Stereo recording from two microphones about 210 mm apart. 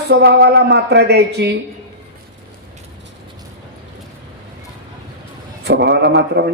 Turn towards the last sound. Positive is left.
turn(degrees=-55)  # may be behind; listen again after turning